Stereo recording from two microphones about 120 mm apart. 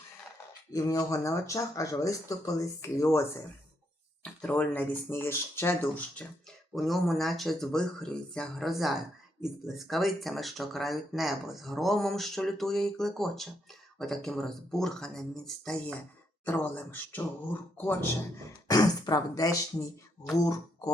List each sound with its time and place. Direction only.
0.7 s speech: 30° left (ahead or behind)
4.2 s speech: 10° left (ahead or behind)
6.7 s speech: centre (ahead or behind); by 18.1 s 15° left (ahead or behind)
18.7 s speech: 35° left (ahead or behind)